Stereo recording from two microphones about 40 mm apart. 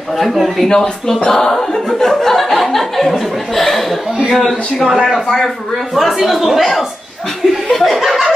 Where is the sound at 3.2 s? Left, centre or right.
Centre.